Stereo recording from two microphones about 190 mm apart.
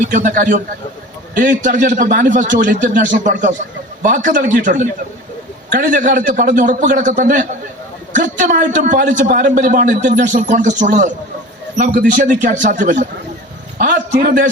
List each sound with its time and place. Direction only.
0.1 s a man's voice: 45° right (ahead or behind)